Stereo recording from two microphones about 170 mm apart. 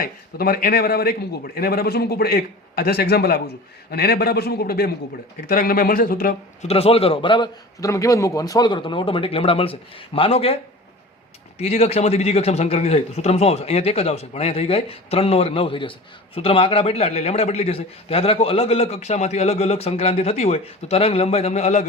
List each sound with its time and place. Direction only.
0.0 s a man's voice: 60° left (ahead or behind)
6.6 s a man's voice: 35° left (ahead or behind)